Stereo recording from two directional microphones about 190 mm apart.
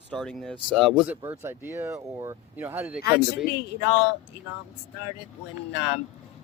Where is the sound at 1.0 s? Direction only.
10° right (ahead or behind).